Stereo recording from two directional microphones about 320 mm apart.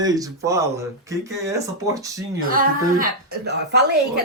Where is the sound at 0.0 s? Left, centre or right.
Centre.